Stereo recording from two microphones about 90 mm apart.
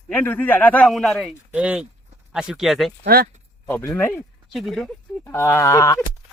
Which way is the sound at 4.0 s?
25° left (ahead or behind).